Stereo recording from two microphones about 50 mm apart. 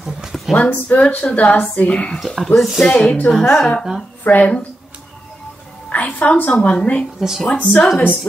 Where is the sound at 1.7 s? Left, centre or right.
Left.